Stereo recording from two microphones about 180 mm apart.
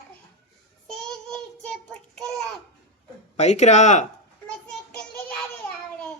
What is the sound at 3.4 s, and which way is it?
Speech, 40° left (ahead or behind).